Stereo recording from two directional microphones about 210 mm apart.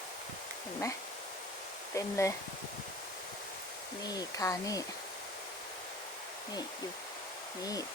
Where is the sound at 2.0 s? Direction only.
15° left (ahead or behind).